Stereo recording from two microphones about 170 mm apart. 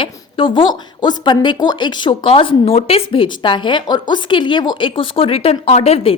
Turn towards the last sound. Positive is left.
turn(degrees=35)  # may be behind; listen again after turning